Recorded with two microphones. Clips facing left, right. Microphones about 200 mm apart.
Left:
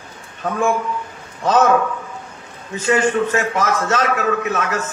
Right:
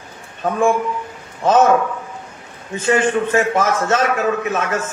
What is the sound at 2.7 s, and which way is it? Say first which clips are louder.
A man's voice: even; 30° right (ahead or behind).